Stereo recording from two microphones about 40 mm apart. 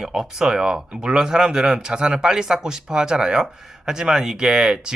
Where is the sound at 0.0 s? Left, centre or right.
Centre.